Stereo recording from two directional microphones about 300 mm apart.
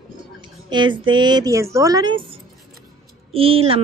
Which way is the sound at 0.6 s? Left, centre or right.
Centre.